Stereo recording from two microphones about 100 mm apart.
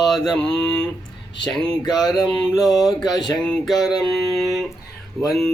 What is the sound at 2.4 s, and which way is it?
Speech, 5° left (ahead or behind).